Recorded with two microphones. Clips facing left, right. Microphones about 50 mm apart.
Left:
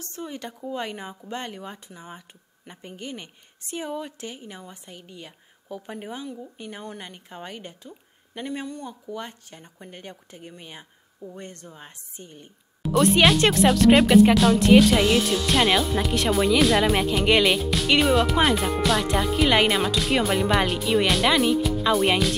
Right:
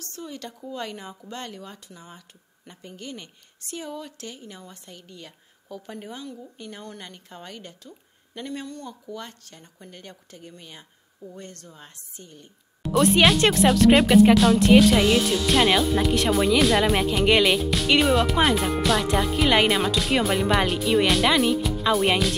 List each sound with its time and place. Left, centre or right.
0.0 s speech: left
12.8 s speech: centre